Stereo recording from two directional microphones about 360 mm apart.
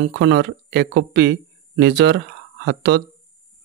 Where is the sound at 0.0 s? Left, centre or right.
Right.